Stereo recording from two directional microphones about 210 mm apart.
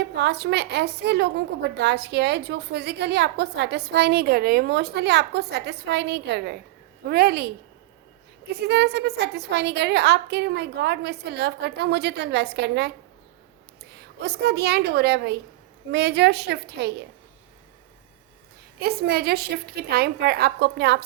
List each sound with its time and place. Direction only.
0.2 s a woman's voice: 55° right (ahead or behind)
8.6 s a woman's voice: 50° right (ahead or behind)
13.9 s a woman's voice: 50° right (ahead or behind)
18.8 s a woman's voice: 50° right (ahead or behind)